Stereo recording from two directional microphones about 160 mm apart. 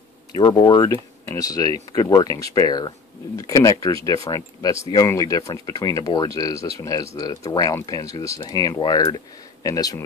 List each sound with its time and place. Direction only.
0.3 s speech: 25° left (ahead or behind)